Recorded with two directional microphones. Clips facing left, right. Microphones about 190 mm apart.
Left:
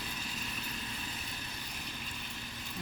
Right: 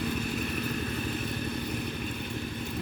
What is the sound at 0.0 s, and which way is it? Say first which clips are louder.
Vehicle: right 13 dB; 60° right (ahead or behind).